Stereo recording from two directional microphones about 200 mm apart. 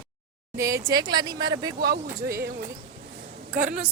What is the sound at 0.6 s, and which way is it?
Speech, 15° right (ahead or behind).